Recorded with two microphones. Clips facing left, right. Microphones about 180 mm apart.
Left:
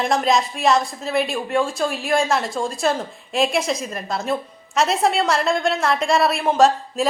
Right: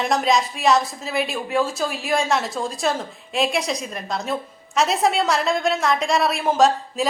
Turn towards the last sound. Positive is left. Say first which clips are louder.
# left 1 dB
turn(degrees=0)  # may be behind; listen again after turning